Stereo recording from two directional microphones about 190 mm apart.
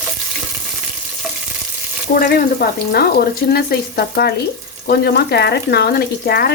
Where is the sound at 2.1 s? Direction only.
55° left (ahead or behind).